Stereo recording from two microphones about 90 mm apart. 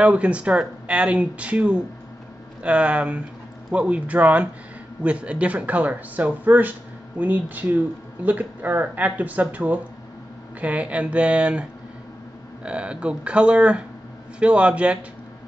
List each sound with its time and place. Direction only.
0.0 s speech: 15° right (ahead or behind)
12.6 s speech: 10° right (ahead or behind)